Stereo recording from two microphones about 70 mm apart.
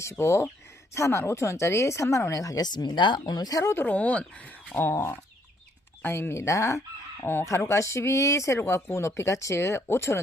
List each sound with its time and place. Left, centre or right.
0.0 s speech: left
3.6 s speech: left
3.8 s speech: left
4.8 s speech: left
6.0 s fowl: left
7.4 s speech: left